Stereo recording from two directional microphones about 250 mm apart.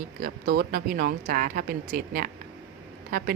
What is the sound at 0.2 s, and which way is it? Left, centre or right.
Speech, right.